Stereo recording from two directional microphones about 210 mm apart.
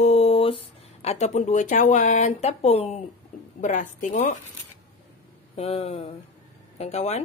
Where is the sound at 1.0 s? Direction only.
35° left (ahead or behind).